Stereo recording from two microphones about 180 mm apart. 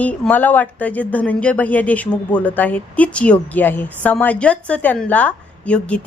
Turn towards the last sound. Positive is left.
turn(degrees=5)  # may be behind; listen again after turning